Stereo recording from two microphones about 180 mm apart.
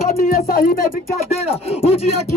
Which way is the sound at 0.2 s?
55° left (ahead or behind).